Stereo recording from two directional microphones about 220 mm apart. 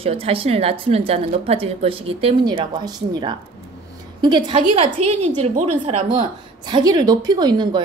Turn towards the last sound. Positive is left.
turn(degrees=-20)  # may be behind; listen again after turning